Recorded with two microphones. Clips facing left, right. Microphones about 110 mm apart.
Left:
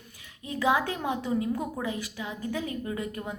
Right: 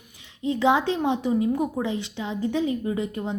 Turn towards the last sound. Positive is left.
turn(degrees=-25)  # may be behind; listen again after turning